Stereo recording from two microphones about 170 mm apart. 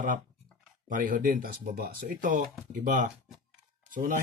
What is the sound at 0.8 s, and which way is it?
Speech, 50° right (ahead or behind).